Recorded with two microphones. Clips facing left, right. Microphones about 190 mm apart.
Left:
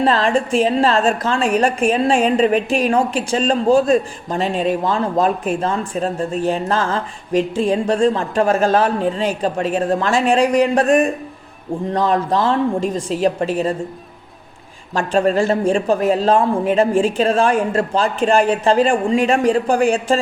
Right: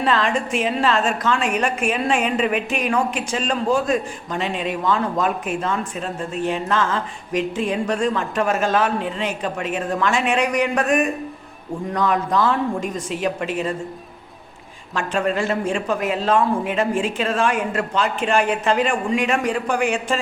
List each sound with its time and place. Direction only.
0.0 s a woman's voice: 35° left (ahead or behind)
14.9 s a woman's voice: 35° left (ahead or behind)